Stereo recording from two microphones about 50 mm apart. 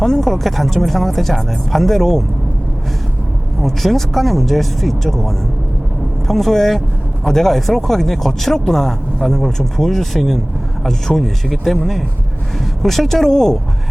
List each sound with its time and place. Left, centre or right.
0.0 s speech: centre
3.6 s speech: centre